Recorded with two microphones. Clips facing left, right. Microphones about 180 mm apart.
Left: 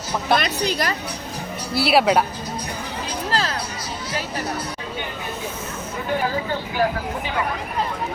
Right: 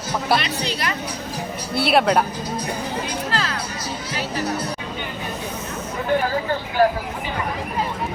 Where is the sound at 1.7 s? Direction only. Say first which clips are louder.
Even; centre (ahead or behind).